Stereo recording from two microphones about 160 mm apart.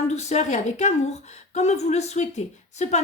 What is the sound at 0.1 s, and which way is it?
A woman's voice, 45° left (ahead or behind).